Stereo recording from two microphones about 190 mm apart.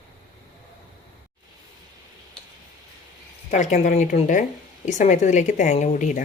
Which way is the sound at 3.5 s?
40° left (ahead or behind).